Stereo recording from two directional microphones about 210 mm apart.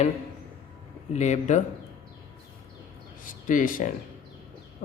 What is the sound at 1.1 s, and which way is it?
Speech, 35° left (ahead or behind).